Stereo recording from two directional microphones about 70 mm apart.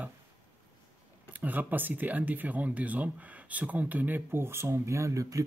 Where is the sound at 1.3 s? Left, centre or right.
Right.